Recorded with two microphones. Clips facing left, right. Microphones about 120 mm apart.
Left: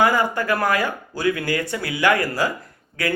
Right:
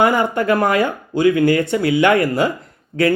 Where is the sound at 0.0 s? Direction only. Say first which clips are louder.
Right 3 dB; 25° right (ahead or behind).